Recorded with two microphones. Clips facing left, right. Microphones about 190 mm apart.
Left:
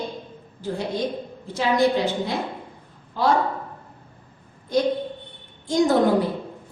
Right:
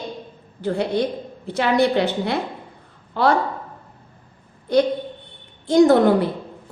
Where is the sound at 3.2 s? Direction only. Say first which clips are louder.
Right 3 dB; 70° right (ahead or behind).